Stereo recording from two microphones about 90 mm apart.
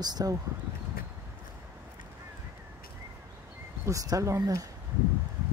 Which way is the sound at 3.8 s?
35° right (ahead or behind).